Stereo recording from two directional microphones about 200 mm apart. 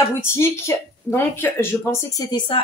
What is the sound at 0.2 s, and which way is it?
Speech, 10° left (ahead or behind).